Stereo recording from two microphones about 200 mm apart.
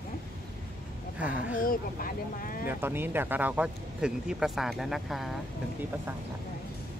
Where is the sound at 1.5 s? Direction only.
45° left (ahead or behind).